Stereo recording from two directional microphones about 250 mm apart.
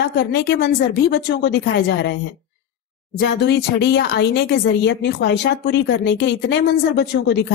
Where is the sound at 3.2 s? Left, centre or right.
Left.